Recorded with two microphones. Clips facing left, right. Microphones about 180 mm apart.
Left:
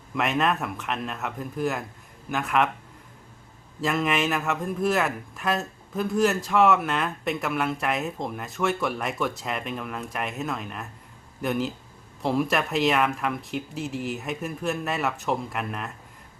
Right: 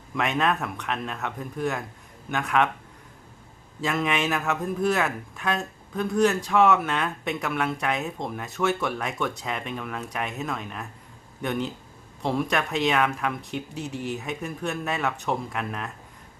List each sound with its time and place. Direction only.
0.1 s a man's voice: centre (ahead or behind)
3.8 s a man's voice: centre (ahead or behind)